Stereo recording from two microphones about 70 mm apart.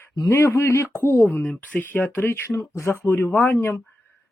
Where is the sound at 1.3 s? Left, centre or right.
Left.